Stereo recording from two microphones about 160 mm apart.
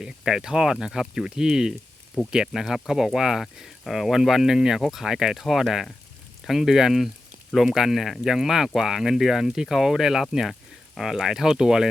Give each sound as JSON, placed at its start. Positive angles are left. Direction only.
{"t": 0.0, "sound": "speech", "side_deg": -5}